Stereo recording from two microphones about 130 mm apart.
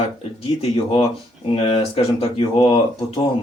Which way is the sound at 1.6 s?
45° left (ahead or behind).